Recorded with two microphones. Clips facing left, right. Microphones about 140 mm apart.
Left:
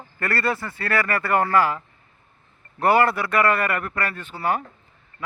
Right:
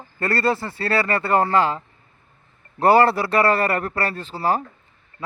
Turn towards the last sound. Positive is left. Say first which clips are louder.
# right 3 dB
turn(degrees=-30)  # may be behind; listen again after turning